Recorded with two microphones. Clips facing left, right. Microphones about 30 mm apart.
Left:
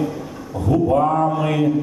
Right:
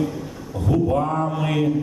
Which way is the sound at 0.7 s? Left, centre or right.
Centre.